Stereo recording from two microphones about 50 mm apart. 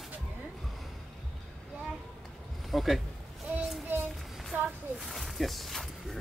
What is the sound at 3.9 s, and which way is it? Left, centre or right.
Child singing, right.